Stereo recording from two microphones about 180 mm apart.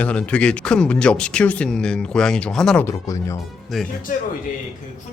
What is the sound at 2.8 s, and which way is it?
Speech, 15° left (ahead or behind).